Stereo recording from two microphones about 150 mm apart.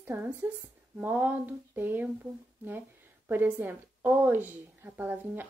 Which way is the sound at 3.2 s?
15° right (ahead or behind).